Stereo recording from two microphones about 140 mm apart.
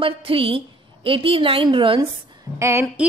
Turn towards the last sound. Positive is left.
turn(degrees=-20)  # may be behind; listen again after turning